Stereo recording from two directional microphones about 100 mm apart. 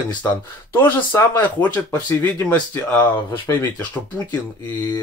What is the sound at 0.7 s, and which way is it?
Speech, 20° left (ahead or behind).